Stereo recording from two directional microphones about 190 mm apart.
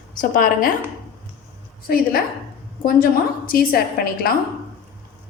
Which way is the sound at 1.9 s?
50° left (ahead or behind).